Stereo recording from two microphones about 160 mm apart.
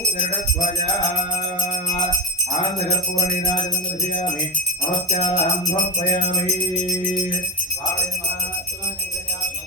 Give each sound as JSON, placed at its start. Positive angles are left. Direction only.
{"t": 5.0, "sound": "jingle bell", "side_deg": 45}
{"t": 6.0, "sound": "music", "side_deg": 40}